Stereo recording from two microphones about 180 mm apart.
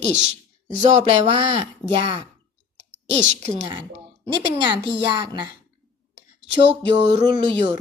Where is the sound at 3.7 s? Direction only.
30° right (ahead or behind).